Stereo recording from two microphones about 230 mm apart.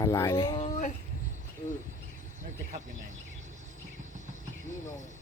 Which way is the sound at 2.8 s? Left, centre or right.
Right.